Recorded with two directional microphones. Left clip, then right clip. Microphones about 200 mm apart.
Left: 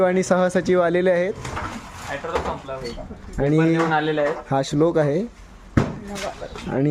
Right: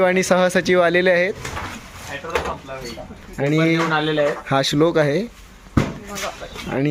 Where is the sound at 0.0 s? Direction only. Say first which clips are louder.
Right 2 dB; 10° left (ahead or behind).